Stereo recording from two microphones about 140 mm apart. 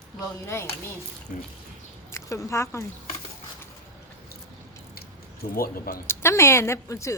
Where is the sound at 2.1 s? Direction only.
20° left (ahead or behind).